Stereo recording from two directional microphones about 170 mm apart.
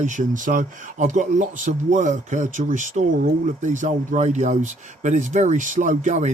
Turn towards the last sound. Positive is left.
turn(degrees=-45)  # may be behind; listen again after turning